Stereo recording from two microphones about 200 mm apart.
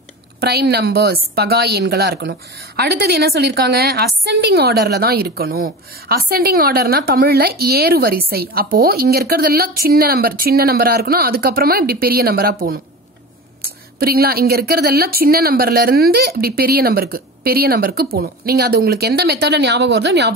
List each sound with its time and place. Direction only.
0.4 s a woman's voice: 55° right (ahead or behind)
13.6 s a woman's voice: 50° right (ahead or behind)